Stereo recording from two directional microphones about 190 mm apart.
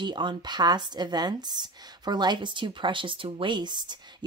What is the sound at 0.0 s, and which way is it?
Speech, 25° right (ahead or behind).